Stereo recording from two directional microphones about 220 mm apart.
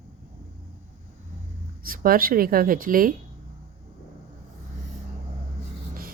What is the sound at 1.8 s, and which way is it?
Speech, 40° right (ahead or behind).